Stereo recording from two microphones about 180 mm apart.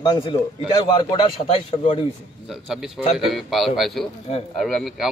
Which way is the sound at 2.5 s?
Centre (ahead or behind).